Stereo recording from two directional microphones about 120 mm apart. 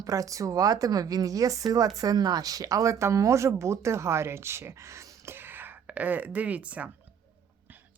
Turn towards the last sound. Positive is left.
turn(degrees=-10)  # may be behind; listen again after turning